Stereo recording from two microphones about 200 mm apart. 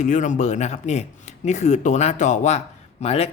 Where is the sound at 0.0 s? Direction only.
40° left (ahead or behind).